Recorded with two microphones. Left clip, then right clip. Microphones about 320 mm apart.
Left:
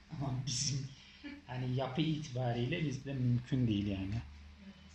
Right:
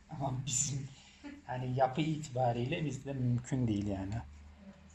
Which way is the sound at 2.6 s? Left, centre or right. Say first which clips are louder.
Right 1 dB; right.